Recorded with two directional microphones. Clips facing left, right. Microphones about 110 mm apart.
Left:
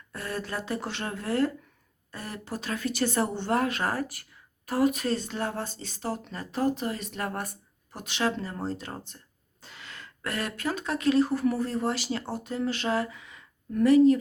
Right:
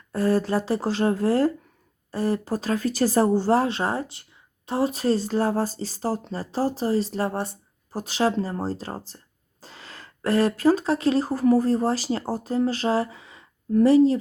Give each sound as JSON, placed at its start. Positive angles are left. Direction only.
{"t": 0.1, "sound": "speech", "side_deg": -35}